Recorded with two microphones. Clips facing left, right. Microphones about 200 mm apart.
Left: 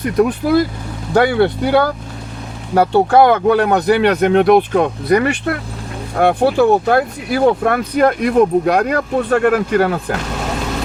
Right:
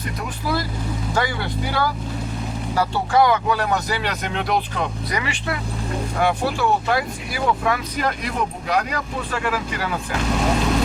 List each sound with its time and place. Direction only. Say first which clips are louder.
0.2 s speech: left 14 dB; 55° left (ahead or behind)